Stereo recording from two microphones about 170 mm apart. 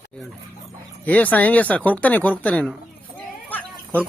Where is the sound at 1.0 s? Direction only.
10° left (ahead or behind).